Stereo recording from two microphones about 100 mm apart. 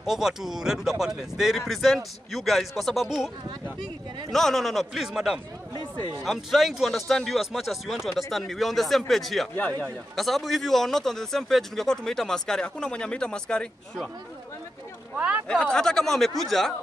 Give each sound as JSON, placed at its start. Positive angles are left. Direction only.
{"t": 0.0, "sound": "speech", "side_deg": -5}
{"t": 4.3, "sound": "speech", "side_deg": 5}
{"t": 9.6, "sound": "a man's voice", "side_deg": 15}
{"t": 10.1, "sound": "speech", "side_deg": 0}
{"t": 15.1, "sound": "speech", "side_deg": -15}
{"t": 15.4, "sound": "speech", "side_deg": 10}